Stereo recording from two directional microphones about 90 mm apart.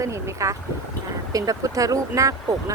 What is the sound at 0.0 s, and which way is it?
Speech, 35° right (ahead or behind).